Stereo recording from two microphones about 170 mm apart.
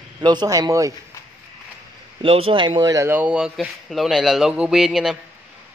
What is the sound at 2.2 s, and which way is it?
Speech, 30° right (ahead or behind).